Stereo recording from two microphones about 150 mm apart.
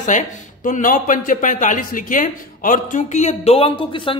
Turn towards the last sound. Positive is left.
turn(degrees=35)  # may be behind; listen again after turning